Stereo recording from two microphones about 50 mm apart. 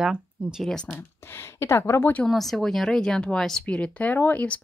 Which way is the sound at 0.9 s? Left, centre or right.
Left.